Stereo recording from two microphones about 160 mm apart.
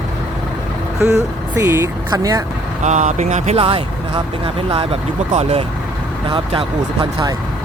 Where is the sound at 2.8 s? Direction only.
50° right (ahead or behind); by 7.3 s 30° right (ahead or behind).